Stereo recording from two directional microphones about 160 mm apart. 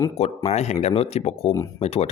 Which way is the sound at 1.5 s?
20° left (ahead or behind).